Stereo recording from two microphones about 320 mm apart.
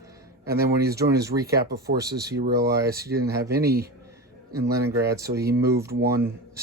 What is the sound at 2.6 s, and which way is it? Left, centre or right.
Speech, centre.